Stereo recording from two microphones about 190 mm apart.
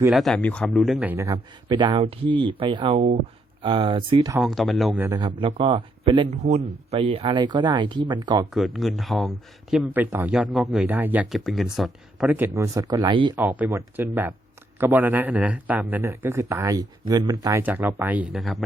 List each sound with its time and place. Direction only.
0.1 s speech: centre (ahead or behind)
1.6 s speech: 25° right (ahead or behind)
4.4 s speech: centre (ahead or behind)
5.0 s speech: 20° right (ahead or behind)
8.5 s speech: centre (ahead or behind); by 13.3 s 25° right (ahead or behind)
13.3 s speech: 10° right (ahead or behind)